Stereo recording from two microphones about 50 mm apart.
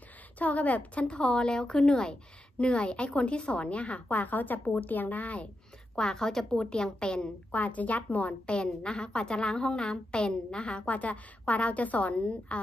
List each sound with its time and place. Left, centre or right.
0.4 s a woman's voice: left
5.9 s a woman's voice: centre
6.6 s a woman's voice: centre
7.5 s a woman's voice: left